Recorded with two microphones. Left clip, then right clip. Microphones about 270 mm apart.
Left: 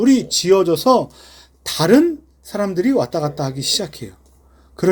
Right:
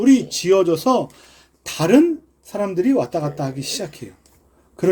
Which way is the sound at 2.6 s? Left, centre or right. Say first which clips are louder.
Left 1 dB; centre.